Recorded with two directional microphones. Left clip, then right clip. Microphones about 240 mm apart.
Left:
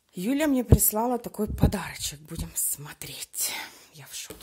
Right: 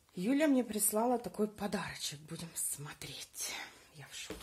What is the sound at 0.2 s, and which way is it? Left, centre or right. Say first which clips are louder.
Speech: left 5 dB; left.